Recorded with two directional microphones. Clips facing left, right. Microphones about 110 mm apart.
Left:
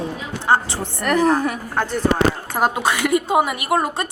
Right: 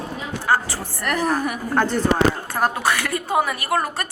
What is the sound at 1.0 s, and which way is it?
Speech, 5° right (ahead or behind).